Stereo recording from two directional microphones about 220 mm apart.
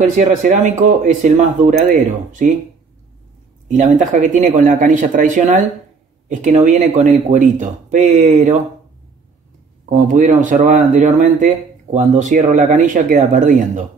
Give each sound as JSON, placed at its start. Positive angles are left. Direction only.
{"t": 0.0, "sound": "speech", "side_deg": -35}
{"t": 3.6, "sound": "speech", "side_deg": -35}
{"t": 9.8, "sound": "speech", "side_deg": -35}